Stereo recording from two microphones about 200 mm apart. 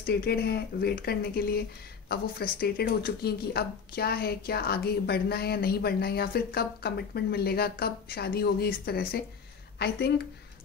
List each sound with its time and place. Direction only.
0.0 s speech: 50° left (ahead or behind)